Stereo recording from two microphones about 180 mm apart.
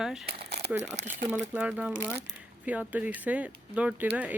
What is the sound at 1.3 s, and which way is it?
Speech, 5° right (ahead or behind).